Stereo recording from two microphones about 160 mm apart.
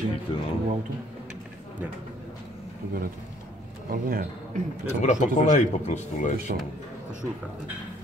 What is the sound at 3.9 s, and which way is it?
Speech, 60° right (ahead or behind).